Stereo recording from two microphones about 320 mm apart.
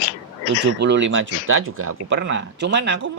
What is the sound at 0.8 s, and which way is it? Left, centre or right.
Speech, right.